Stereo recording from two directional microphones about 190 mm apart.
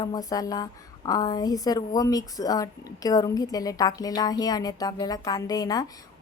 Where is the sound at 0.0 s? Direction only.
20° left (ahead or behind).